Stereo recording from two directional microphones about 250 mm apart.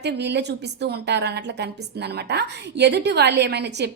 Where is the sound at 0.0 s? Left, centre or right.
Right.